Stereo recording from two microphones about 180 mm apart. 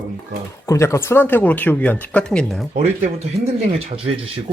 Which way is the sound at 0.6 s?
15° left (ahead or behind).